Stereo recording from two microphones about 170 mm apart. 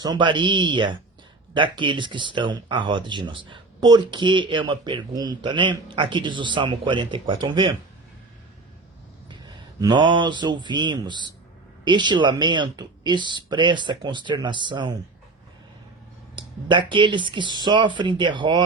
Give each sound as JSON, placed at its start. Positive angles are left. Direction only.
{"t": 0.0, "sound": "speech", "side_deg": -25}
{"t": 9.8, "sound": "speech", "side_deg": -30}
{"t": 16.3, "sound": "speech", "side_deg": -30}